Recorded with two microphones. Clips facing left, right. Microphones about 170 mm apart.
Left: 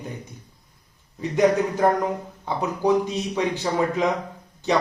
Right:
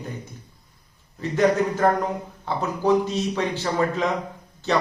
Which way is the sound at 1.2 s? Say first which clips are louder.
Left 1 dB; 15° left (ahead or behind).